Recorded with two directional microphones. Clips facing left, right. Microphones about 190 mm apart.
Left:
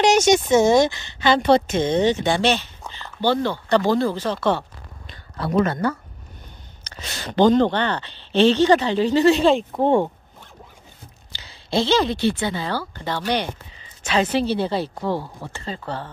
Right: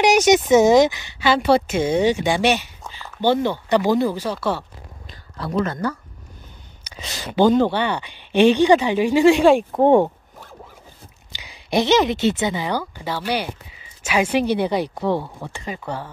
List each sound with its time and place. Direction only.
0.0 s speech: 15° right (ahead or behind)
5.4 s speech: 65° left (ahead or behind)
6.8 s speech: 10° right (ahead or behind)
11.3 s speech: 15° right (ahead or behind)